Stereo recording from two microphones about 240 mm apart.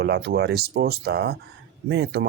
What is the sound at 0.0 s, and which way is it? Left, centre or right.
Speech, right.